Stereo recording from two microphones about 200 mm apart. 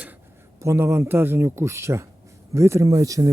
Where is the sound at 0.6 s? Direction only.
15° right (ahead or behind).